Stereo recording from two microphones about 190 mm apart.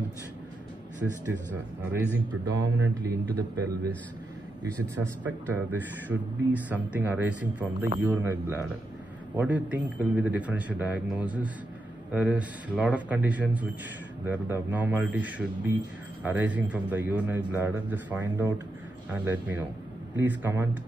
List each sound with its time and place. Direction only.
2.5 s a man's voice: 20° right (ahead or behind)
5.0 s a man's voice: 10° right (ahead or behind)